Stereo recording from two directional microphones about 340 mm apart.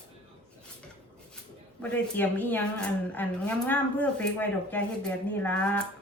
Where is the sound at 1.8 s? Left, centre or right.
Centre.